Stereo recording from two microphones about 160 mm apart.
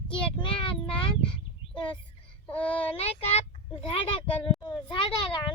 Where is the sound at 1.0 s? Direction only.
30° left (ahead or behind).